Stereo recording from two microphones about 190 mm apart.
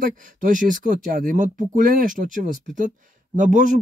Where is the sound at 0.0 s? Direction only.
45° right (ahead or behind).